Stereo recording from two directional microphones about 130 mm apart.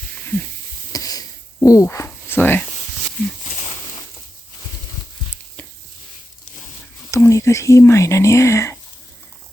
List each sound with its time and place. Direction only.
0.9 s a sound: 30° left (ahead or behind)
1.6 s speech: 25° left (ahead or behind)
7.1 s speech: 20° left (ahead or behind)